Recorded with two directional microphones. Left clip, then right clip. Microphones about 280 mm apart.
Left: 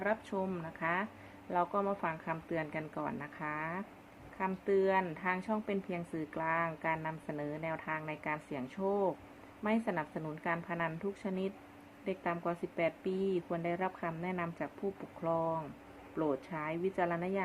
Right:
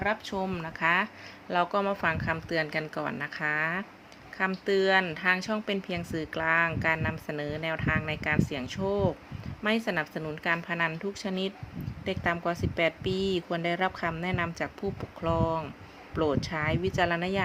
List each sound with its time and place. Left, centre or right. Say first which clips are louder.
0.0 s speech: right 5 dB; centre